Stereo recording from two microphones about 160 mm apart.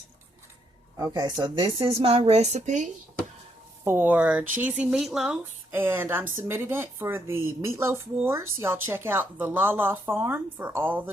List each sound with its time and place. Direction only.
0.9 s speech: 20° right (ahead or behind); by 2.9 s 50° right (ahead or behind)
3.8 s a woman's voice: 10° right (ahead or behind)